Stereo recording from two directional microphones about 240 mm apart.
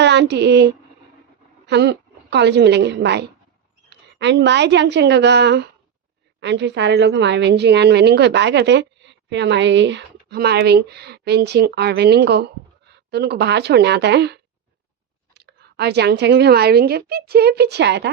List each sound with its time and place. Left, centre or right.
0.0 s a woman's voice: right